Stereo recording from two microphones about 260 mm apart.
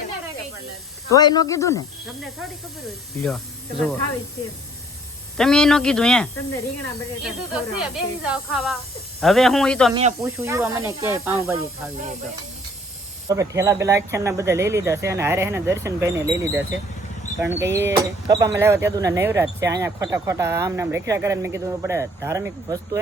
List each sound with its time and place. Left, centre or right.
1.1 s speech: centre
3.2 s speech: centre
5.4 s speech: centre
7.5 s speech: centre
9.9 s speech: right
10.2 s speech: centre
13.2 s speech: centre